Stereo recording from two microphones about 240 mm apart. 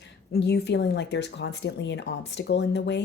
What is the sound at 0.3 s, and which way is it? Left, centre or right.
Speech, left.